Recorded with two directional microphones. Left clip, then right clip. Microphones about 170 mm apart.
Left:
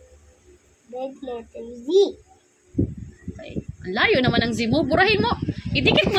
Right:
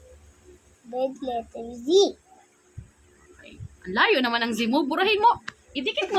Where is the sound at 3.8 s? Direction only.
15° left (ahead or behind).